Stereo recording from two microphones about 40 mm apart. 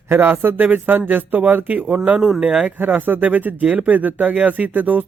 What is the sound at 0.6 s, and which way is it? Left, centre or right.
Speech, right.